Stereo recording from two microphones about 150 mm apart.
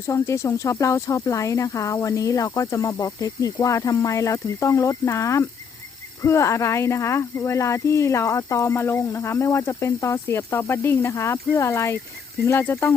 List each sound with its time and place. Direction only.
0.1 s speech: 20° left (ahead or behind)